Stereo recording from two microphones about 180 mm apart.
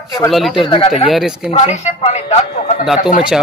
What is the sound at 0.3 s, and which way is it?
Speech, centre (ahead or behind).